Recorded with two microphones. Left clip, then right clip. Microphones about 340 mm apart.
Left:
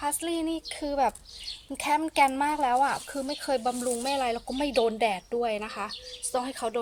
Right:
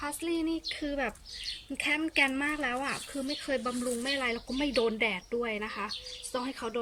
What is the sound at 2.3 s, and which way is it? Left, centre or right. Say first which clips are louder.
Speech: left 7 dB; left.